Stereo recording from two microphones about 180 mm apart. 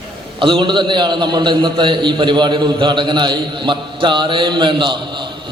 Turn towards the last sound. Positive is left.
turn(degrees=-25)  # may be behind; listen again after turning